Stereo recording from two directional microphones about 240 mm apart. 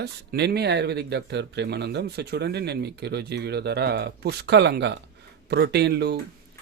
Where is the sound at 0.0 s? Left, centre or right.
Right.